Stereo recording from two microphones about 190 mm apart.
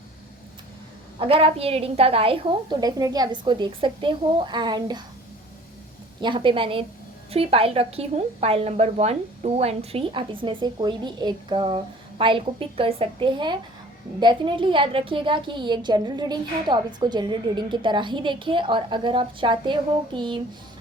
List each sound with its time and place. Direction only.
1.2 s a woman's voice: 30° right (ahead or behind)
6.2 s a woman's voice: 25° right (ahead or behind)